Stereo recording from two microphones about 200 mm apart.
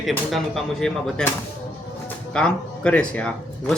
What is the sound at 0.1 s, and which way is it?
Speech, centre (ahead or behind).